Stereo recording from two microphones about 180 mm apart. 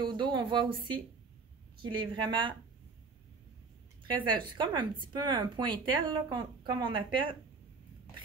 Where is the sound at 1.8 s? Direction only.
25° right (ahead or behind).